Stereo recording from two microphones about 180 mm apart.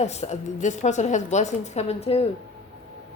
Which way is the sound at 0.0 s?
40° left (ahead or behind).